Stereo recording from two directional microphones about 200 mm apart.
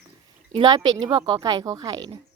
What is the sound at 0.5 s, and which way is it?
Speech, 25° right (ahead or behind).